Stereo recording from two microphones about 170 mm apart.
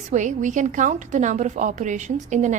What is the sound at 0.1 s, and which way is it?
A woman's voice, 45° right (ahead or behind).